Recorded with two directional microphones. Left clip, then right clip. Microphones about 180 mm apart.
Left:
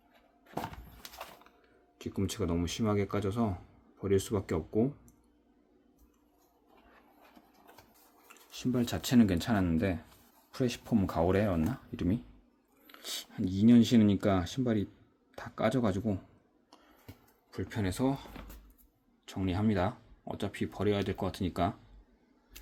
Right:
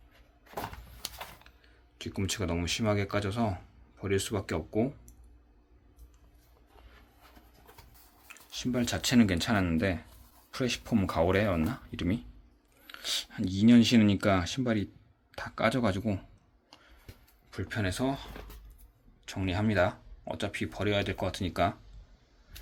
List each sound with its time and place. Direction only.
2.0 s speech: 10° left (ahead or behind)
8.3 s a sound: 20° left (ahead or behind)
8.6 s speech: 15° left (ahead or behind)
17.5 s speech: 15° left (ahead or behind)